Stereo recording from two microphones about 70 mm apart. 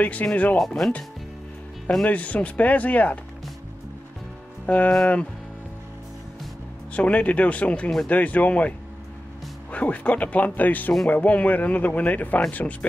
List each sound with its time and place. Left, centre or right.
0.0 s speech: left
0.6 s speech: centre
2.0 s speech: left
4.6 s speech: left
6.9 s speech: centre